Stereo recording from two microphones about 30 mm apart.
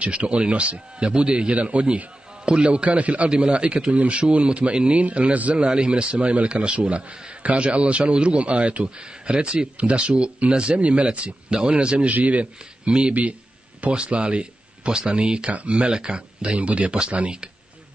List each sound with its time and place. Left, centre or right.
0.0 s a man's voice: right
1.5 s a man's voice: right
2.4 s a man's voice: right
3.3 s a man's voice: right
5.1 s a man's voice: right
5.6 s a man's voice: right
6.2 s a man's voice: right
6.5 s a man's voice: right
9.8 s a man's voice: right
12.1 s a man's voice: right
12.8 s speech: right
15.5 s a man's voice: right
15.9 s a man's voice: right